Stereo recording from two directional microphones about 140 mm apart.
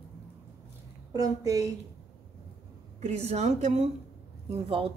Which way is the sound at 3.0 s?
50° right (ahead or behind).